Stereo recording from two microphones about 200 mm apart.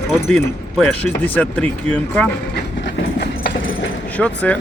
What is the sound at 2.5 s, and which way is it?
Train, 60° left (ahead or behind).